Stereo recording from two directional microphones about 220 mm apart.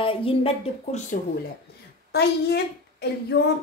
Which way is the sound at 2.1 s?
50° left (ahead or behind).